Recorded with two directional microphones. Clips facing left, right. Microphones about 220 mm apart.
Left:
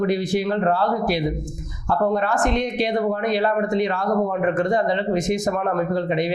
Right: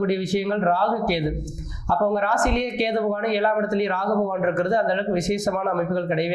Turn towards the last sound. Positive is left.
turn(degrees=20)  # may be behind; listen again after turning